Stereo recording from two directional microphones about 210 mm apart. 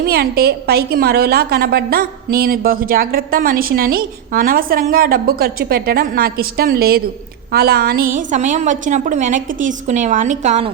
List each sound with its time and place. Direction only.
0.0 s a woman's voice: 45° right (ahead or behind)